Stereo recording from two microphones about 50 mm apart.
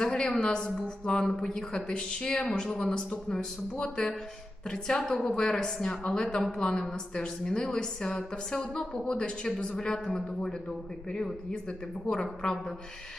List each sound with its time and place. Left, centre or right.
0.0 s a woman's voice: centre